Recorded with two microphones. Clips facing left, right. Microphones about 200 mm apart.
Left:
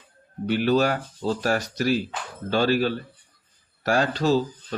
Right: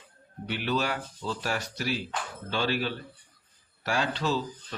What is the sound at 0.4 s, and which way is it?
Speech, 40° left (ahead or behind).